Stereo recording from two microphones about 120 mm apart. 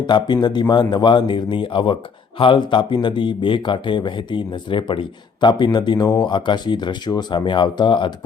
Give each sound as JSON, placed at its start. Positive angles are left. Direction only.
{"t": 0.1, "sound": "speech", "side_deg": 40}